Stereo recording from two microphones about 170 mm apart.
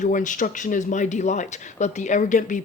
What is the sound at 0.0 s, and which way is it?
Speech, 50° left (ahead or behind).